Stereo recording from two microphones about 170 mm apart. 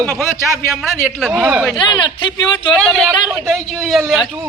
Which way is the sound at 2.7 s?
Centre (ahead or behind).